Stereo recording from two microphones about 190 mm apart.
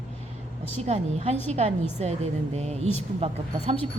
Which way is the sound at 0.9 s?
35° right (ahead or behind).